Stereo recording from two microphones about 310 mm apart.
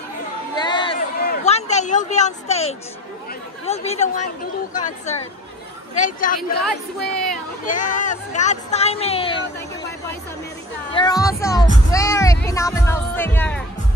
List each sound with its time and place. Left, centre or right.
0.6 s crowd: centre
0.9 s a sound: left
3.6 s speech: left
6.6 s speech: centre
7.6 s speech: left
10.9 s speech: centre
11.9 s music: centre
12.4 s speech: centre